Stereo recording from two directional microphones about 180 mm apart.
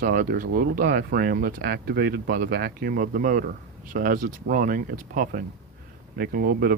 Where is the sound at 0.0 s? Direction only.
50° right (ahead or behind).